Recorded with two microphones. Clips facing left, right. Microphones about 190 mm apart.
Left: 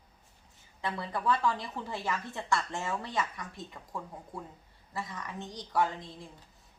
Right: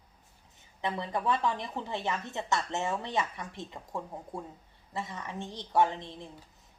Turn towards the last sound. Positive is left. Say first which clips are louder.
# right 3 dB
turn(degrees=-25)  # may be behind; listen again after turning